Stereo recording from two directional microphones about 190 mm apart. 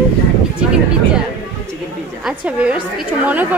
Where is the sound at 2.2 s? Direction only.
5° right (ahead or behind).